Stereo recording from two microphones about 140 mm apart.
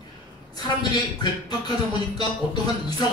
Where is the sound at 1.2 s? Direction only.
30° left (ahead or behind).